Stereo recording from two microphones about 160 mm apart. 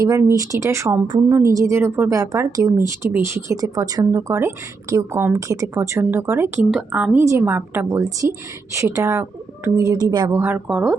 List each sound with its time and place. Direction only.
0.0 s a woman's voice: 20° right (ahead or behind)